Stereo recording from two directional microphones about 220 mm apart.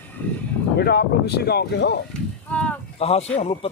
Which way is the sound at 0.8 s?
50° left (ahead or behind).